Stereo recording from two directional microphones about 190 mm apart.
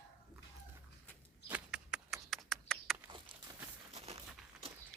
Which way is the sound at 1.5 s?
5° right (ahead or behind).